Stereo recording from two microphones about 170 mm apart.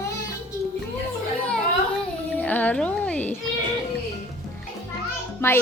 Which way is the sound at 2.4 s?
10° left (ahead or behind).